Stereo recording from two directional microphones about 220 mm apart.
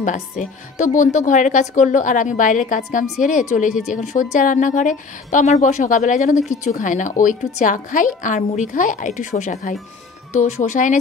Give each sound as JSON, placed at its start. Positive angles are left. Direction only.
{"t": 0.0, "sound": "speech", "side_deg": 35}